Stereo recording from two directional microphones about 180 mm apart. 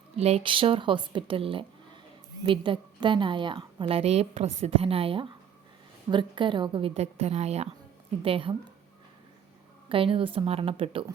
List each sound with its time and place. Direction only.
0.2 s a woman's voice: 35° right (ahead or behind)
9.9 s a woman's voice: 30° right (ahead or behind)